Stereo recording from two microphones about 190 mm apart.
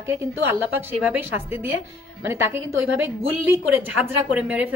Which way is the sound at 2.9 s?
10° right (ahead or behind).